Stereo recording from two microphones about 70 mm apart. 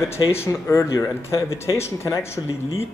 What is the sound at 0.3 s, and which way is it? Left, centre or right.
Speech, left.